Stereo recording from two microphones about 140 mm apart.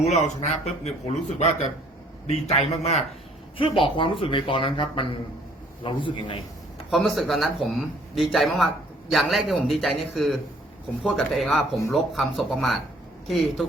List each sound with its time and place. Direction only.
0.6 s a man's voice: 50° left (ahead or behind)
3.6 s speech: 40° left (ahead or behind)
6.9 s a man's voice: centre (ahead or behind)